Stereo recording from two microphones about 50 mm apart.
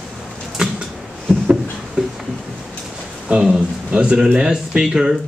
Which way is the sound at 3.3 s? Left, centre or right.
Centre.